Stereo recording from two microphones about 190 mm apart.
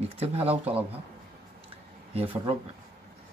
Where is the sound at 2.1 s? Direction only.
30° right (ahead or behind).